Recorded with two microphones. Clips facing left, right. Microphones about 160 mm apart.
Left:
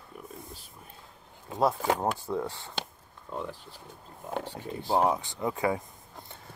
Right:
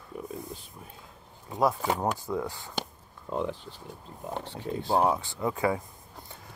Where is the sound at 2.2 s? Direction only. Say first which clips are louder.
Even; 30° left (ahead or behind).